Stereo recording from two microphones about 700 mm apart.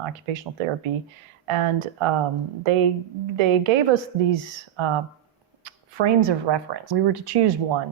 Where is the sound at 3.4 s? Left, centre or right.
Right.